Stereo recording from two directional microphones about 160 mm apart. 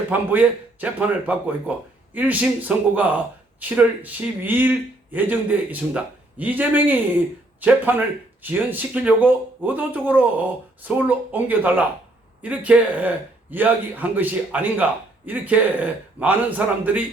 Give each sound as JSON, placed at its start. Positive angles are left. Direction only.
{"t": 0.1, "sound": "speech", "side_deg": -10}